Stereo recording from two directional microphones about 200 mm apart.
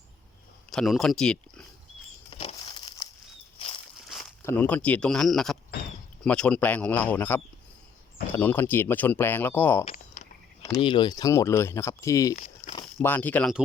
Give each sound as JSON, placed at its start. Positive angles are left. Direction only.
{"t": 0.7, "sound": "speech", "side_deg": 0}
{"t": 2.3, "sound": "crumpling", "side_deg": 25}
{"t": 4.1, "sound": "a sound", "side_deg": 0}
{"t": 4.4, "sound": "speech", "side_deg": 10}
{"t": 9.8, "sound": "a sound", "side_deg": 40}
{"t": 10.8, "sound": "speech", "side_deg": 25}
{"t": 12.4, "sound": "walk", "side_deg": 30}
{"t": 13.0, "sound": "speech", "side_deg": 10}